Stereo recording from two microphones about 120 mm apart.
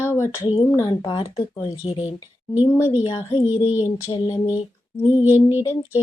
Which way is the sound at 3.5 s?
15° right (ahead or behind).